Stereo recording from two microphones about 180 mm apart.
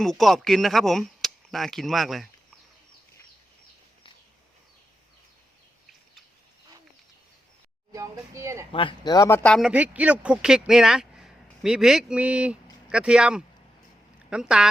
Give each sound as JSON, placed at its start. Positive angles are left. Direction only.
{"t": 0.0, "sound": "speech", "side_deg": 0}
{"t": 7.9, "sound": "a sound", "side_deg": -15}
{"t": 8.7, "sound": "speech", "side_deg": 30}
{"t": 9.6, "sound": "speech", "side_deg": -5}